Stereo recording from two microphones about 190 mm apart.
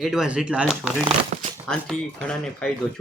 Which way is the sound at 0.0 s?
Centre (ahead or behind).